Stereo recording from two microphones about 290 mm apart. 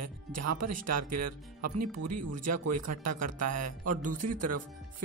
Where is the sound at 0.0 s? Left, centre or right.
Right.